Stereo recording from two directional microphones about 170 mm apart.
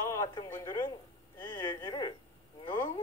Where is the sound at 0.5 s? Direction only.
20° left (ahead or behind).